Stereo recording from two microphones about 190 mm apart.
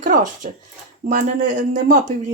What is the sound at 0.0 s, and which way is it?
Speech, 40° right (ahead or behind).